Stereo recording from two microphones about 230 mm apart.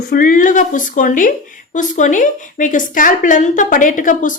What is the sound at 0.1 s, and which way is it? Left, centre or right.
Speech, left.